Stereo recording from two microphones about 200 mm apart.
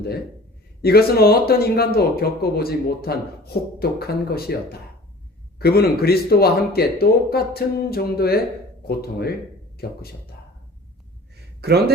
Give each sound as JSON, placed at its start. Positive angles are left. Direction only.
{"t": 0.8, "sound": "speech", "side_deg": 50}
{"t": 5.5, "sound": "speech", "side_deg": 50}
{"t": 11.6, "sound": "a man's voice", "side_deg": -55}